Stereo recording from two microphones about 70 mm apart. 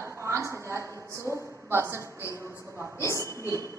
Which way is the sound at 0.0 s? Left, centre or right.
Right.